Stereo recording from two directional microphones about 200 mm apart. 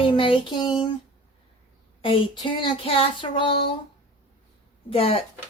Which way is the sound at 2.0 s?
25° left (ahead or behind).